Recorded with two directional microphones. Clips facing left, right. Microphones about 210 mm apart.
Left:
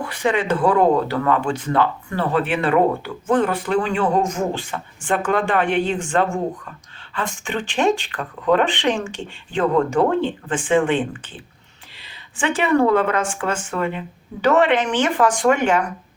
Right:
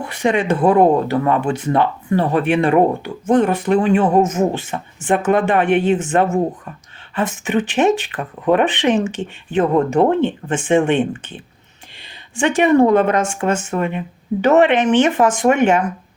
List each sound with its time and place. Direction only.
0.0 s speech: 25° right (ahead or behind)
12.4 s speech: 25° right (ahead or behind)